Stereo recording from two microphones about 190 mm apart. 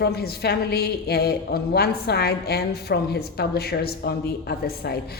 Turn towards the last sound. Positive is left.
turn(degrees=55)  # may be behind; listen again after turning